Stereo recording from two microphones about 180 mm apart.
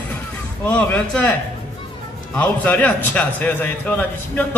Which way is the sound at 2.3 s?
10° left (ahead or behind).